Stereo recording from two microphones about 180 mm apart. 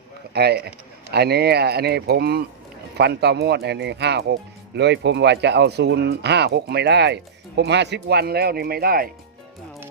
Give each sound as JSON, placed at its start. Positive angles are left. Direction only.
{"t": 0.3, "sound": "speech", "side_deg": -65}